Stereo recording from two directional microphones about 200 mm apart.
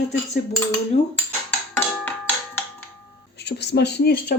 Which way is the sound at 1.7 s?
10° left (ahead or behind).